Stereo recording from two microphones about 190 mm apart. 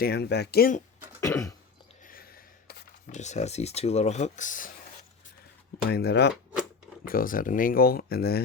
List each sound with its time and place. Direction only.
0.0 s speech: 60° left (ahead or behind)
1.2 s cough: 15° left (ahead or behind)
2.0 s a sound: 50° left (ahead or behind)
3.1 s speech: 40° left (ahead or behind)
5.9 s speech: 60° left (ahead or behind)
7.1 s speech: 45° left (ahead or behind)